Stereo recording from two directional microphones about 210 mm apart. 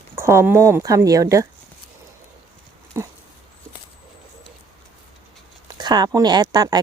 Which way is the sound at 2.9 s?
15° right (ahead or behind).